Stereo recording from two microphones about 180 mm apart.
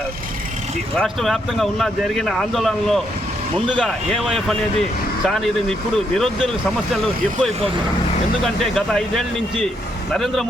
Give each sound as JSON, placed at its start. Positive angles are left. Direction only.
{"t": 0.9, "sound": "speech", "side_deg": 0}
{"t": 8.6, "sound": "speech", "side_deg": 0}